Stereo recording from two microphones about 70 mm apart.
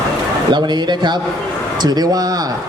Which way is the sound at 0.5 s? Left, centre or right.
Right.